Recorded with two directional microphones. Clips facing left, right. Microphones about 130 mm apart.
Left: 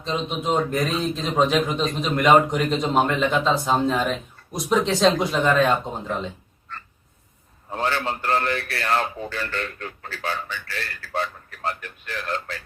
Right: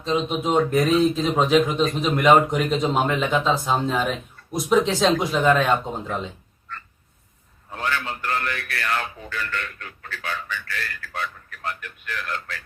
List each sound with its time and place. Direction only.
0.0 s speech: centre (ahead or behind)
7.7 s a man's voice: 30° left (ahead or behind)